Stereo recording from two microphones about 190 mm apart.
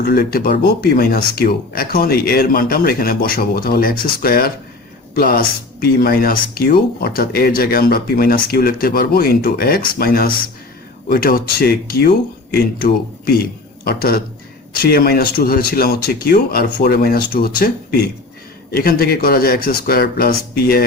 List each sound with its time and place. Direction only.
0.0 s speech: 55° left (ahead or behind)
18.7 s speech: 50° left (ahead or behind)